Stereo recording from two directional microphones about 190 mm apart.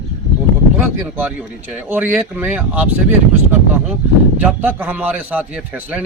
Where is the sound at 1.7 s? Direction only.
10° right (ahead or behind).